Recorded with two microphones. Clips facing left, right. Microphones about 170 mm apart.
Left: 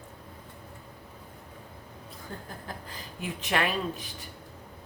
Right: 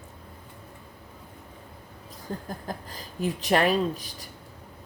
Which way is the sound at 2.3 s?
35° right (ahead or behind).